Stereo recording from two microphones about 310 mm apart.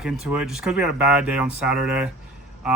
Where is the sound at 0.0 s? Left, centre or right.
Centre.